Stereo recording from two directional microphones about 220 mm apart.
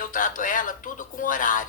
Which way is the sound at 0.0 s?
40° left (ahead or behind).